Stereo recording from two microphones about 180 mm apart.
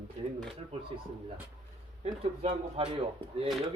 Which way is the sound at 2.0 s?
35° right (ahead or behind).